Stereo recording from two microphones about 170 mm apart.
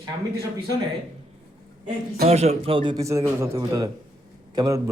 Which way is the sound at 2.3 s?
40° right (ahead or behind).